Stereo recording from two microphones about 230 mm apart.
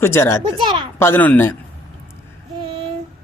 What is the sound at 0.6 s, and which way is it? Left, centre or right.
Speech, right.